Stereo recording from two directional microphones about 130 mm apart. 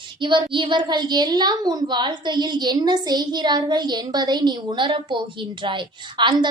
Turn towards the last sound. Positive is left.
turn(degrees=-40)  # may be behind; listen again after turning